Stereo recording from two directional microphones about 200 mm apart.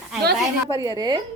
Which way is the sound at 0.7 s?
20° right (ahead or behind).